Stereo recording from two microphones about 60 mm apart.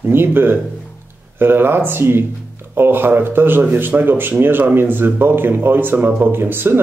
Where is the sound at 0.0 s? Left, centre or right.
Right.